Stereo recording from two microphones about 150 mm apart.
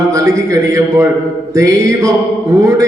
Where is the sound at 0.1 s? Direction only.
20° right (ahead or behind).